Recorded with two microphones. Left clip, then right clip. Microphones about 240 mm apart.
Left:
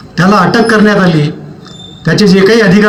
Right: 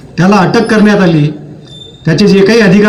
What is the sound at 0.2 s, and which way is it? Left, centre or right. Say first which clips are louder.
A man's voice: left 1 dB; left.